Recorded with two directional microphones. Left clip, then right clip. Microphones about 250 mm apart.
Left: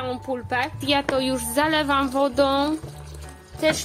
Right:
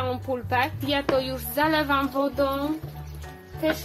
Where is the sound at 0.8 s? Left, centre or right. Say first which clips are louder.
Left 2 dB; left.